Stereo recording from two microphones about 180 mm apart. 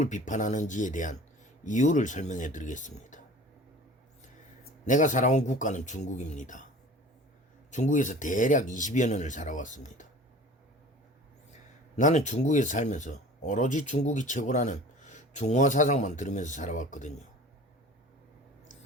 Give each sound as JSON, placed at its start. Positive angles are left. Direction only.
{"t": 0.0, "sound": "speech", "side_deg": 45}
{"t": 4.9, "sound": "speech", "side_deg": 45}
{"t": 7.7, "sound": "speech", "side_deg": 45}
{"t": 11.9, "sound": "speech", "side_deg": 40}